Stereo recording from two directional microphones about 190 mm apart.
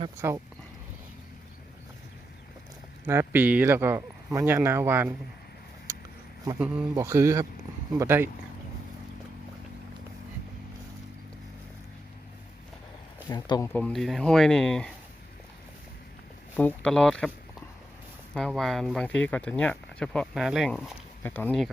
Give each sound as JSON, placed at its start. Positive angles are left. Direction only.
{"t": 0.2, "sound": "speech", "side_deg": -15}
{"t": 3.1, "sound": "speech", "side_deg": -10}
{"t": 6.9, "sound": "speech", "side_deg": -15}
{"t": 13.2, "sound": "speech", "side_deg": 20}
{"t": 13.7, "sound": "speech", "side_deg": 5}
{"t": 16.6, "sound": "speech", "side_deg": 5}
{"t": 18.3, "sound": "speech", "side_deg": 5}